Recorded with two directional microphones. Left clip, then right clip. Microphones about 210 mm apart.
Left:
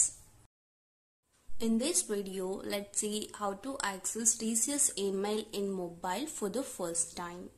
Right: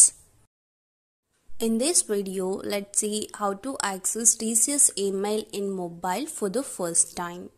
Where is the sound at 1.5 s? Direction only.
35° right (ahead or behind).